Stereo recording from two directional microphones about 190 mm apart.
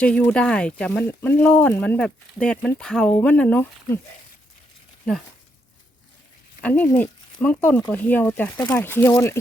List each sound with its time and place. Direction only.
0.0 s speech: 5° left (ahead or behind)
6.6 s speech: 10° left (ahead or behind)